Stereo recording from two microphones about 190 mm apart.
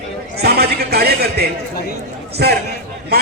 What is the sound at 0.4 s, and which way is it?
Music, 55° right (ahead or behind).